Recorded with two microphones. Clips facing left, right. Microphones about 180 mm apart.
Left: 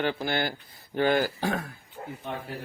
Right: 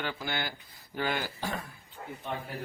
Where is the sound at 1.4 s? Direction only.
65° left (ahead or behind).